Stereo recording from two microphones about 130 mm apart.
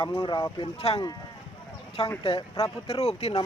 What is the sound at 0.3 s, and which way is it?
Speech, 25° left (ahead or behind).